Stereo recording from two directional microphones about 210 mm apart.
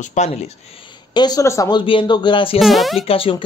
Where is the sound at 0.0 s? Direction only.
35° left (ahead or behind).